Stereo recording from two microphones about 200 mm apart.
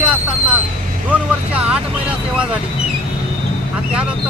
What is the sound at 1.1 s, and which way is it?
Vehicle, 5° right (ahead or behind).